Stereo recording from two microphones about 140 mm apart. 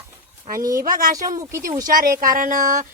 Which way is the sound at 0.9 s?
75° right (ahead or behind).